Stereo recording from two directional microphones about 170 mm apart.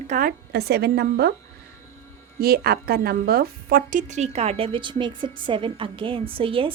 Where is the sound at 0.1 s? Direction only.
55° right (ahead or behind).